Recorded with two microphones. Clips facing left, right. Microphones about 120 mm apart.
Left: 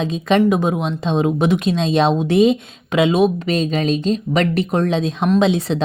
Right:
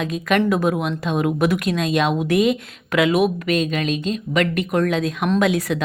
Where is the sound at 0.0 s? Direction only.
25° left (ahead or behind).